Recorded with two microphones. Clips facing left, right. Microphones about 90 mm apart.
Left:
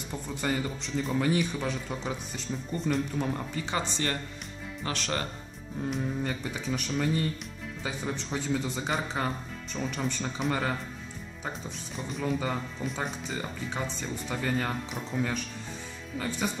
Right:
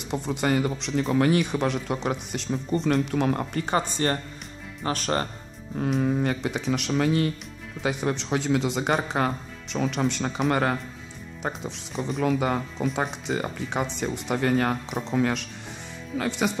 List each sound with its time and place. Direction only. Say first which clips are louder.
0.0 s speech: right 7 dB; 75° right (ahead or behind); by 5.3 s 40° right (ahead or behind)
5.9 s speech: right 10 dB; 80° right
7.8 s speech: right 8 dB; 70° right (ahead or behind)
11.4 s speech: right 6 dB; 80° right
15.0 s speech: right 7 dB; 90° right
16.2 s speech: right 6 dB; 80° right